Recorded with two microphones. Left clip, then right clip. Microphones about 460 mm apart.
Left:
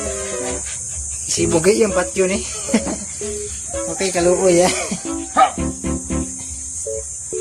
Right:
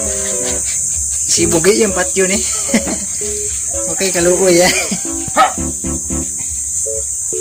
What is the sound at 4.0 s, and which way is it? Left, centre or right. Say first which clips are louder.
Speech: right 3 dB; left.